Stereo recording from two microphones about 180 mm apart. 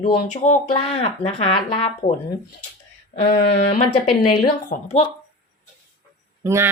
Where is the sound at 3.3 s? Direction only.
60° left (ahead or behind).